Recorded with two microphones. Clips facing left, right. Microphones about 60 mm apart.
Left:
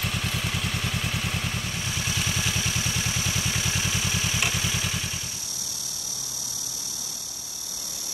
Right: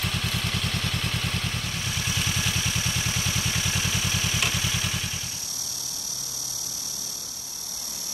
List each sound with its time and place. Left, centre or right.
0.0 s vehicle: centre